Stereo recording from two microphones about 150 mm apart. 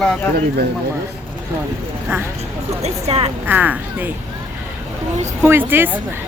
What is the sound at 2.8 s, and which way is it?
Speech, 45° right (ahead or behind).